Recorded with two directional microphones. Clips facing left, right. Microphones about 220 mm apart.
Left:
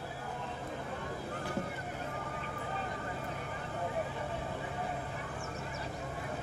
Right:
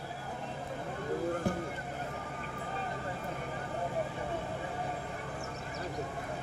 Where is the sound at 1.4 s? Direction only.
50° right (ahead or behind).